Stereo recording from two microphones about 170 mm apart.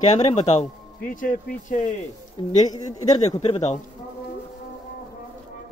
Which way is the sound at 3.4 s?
40° left (ahead or behind).